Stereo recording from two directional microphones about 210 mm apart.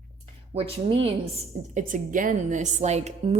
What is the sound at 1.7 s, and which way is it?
Speech, 40° right (ahead or behind).